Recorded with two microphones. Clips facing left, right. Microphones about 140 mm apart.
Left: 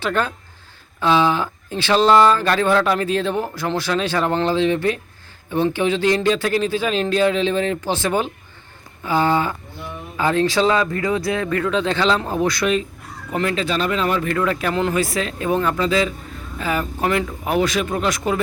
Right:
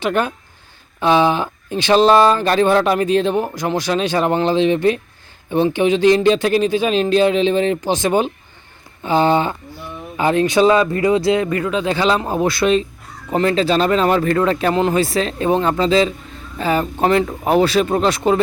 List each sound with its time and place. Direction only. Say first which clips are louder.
0.0 s speech: right 3 dB; 15° right (ahead or behind)